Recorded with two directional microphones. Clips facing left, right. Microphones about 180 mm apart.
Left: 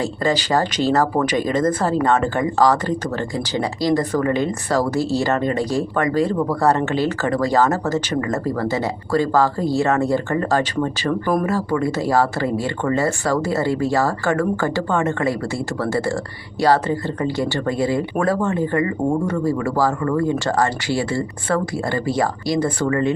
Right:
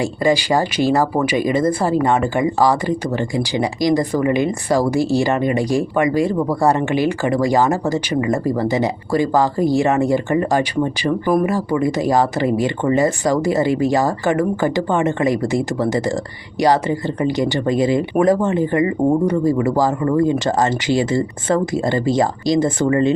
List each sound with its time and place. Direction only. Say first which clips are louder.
0.0 s speech: right 3 dB; 15° right (ahead or behind)